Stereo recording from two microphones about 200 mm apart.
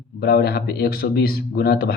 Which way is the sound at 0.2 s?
50° left (ahead or behind).